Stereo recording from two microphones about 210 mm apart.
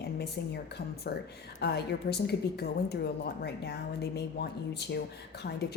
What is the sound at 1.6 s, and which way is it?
A woman's voice, 50° left (ahead or behind).